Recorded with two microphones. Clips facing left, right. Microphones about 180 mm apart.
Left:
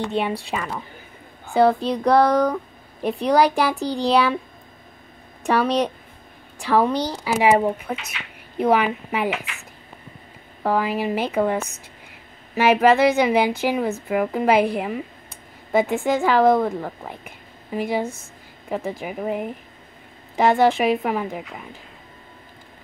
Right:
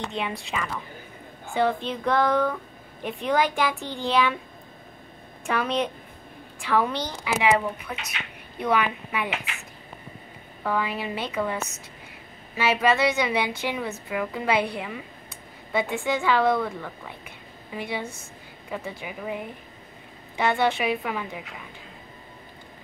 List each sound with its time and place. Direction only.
0.3 s a woman's voice: 35° left (ahead or behind)
5.4 s a woman's voice: 35° left (ahead or behind)
10.6 s a woman's voice: 40° left (ahead or behind)